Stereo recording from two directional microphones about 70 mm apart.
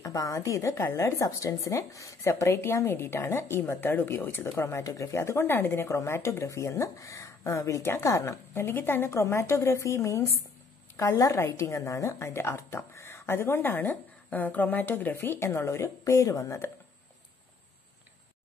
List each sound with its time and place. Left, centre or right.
0.0 s a woman's voice: left